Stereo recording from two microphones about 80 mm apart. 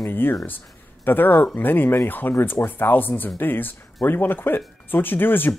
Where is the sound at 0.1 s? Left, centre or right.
Left.